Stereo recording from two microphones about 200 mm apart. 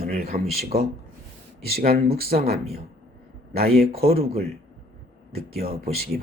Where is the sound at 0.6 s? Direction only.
50° right (ahead or behind).